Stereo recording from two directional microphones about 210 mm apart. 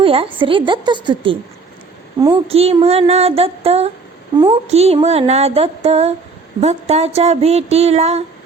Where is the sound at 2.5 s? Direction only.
30° right (ahead or behind).